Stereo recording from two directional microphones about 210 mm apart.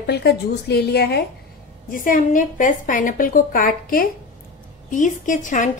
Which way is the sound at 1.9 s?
40° left (ahead or behind).